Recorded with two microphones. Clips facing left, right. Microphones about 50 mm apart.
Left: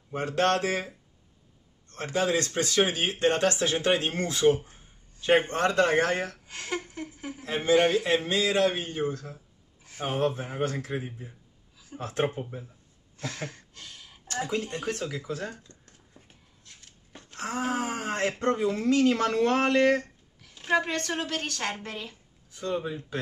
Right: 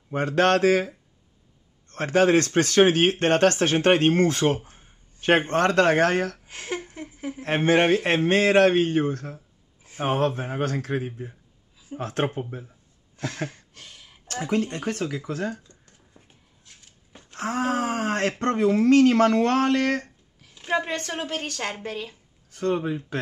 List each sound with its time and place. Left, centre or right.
0.1 s speech: right
6.4 s a sound: right
7.4 s speech: right
13.5 s a sound: right
14.2 s speech: right
15.6 s a sound: centre
17.4 s speech: right
20.7 s a woman's voice: right
21.8 s speech: right
22.5 s speech: right